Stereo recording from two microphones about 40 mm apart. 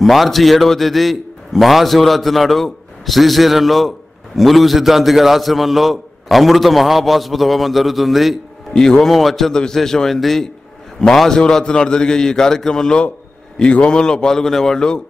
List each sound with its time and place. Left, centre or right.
0.0 s a man's voice: centre
8.7 s a man's voice: centre
9.1 s a man's voice: centre
11.3 s a man's voice: centre